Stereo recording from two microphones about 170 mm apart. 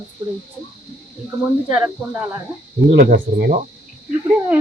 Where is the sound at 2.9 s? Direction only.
60° right (ahead or behind).